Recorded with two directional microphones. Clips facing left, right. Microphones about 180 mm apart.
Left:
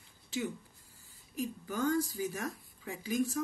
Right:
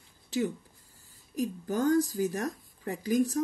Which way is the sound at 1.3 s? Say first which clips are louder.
Right 6 dB; 40° right (ahead or behind).